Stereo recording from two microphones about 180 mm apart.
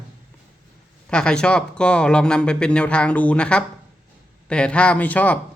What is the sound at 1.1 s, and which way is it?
A man's voice, 5° left (ahead or behind).